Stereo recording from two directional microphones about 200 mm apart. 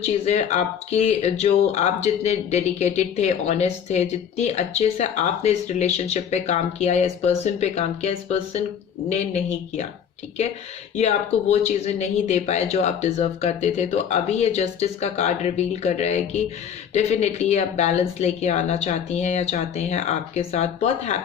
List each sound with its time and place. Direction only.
0.0 s speech: 35° left (ahead or behind)
11.5 s speech: 35° left (ahead or behind)